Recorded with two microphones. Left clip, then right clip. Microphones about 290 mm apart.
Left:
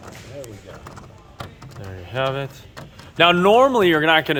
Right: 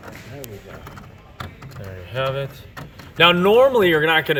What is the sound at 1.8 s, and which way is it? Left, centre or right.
Speech, centre.